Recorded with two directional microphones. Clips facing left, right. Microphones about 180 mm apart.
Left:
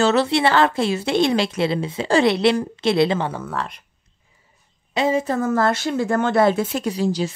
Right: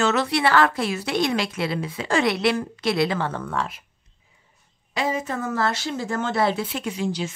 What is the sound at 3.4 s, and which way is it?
Speech, centre (ahead or behind).